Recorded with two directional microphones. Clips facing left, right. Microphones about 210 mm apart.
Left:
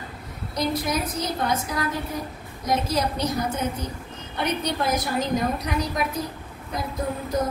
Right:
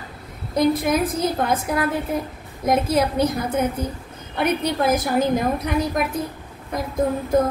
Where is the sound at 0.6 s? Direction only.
55° right (ahead or behind).